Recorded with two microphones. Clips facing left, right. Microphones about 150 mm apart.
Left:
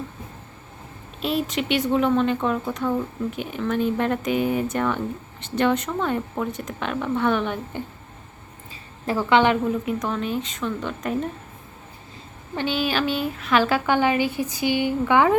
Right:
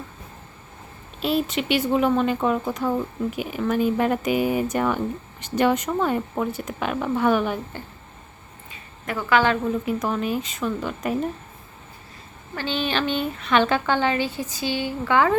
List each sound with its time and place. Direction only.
1.2 s speech: centre (ahead or behind)
8.7 s a woman's voice: 30° left (ahead or behind)
9.6 s speech: centre (ahead or behind)
12.5 s a woman's voice: 10° left (ahead or behind)